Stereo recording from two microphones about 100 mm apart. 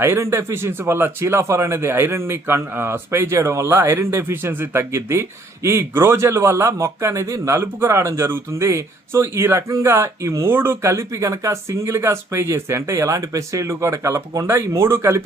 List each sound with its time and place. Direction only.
0.0 s speech: 25° right (ahead or behind)